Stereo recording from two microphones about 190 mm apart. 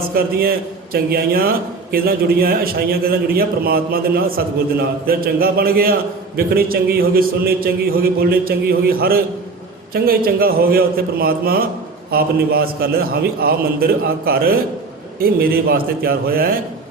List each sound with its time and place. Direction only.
0.1 s a man's voice: 50° right (ahead or behind)